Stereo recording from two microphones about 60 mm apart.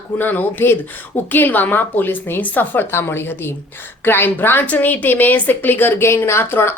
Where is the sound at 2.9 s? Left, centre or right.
Left.